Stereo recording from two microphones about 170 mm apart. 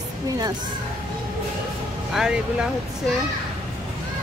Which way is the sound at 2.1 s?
5° right (ahead or behind).